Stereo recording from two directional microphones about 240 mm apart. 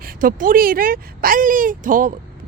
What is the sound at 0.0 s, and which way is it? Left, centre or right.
Speech, right.